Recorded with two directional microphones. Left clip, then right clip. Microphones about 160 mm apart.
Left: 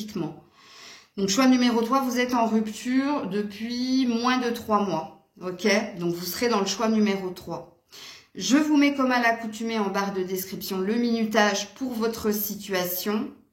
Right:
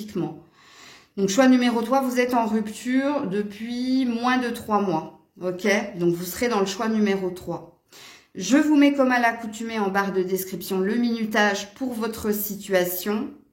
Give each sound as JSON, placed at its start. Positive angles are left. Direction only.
{"t": 0.2, "sound": "speech", "side_deg": -35}
{"t": 8.4, "sound": "speech", "side_deg": -35}